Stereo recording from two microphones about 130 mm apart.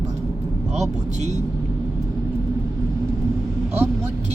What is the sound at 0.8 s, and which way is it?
Speech, 60° right (ahead or behind).